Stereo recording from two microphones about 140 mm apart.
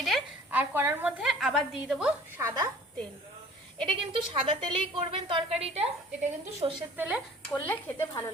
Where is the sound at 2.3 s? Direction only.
20° right (ahead or behind).